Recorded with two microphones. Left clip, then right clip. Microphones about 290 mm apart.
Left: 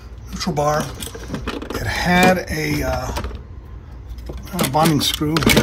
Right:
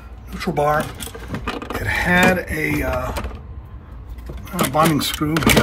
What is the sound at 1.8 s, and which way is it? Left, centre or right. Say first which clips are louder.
Speech: even; centre.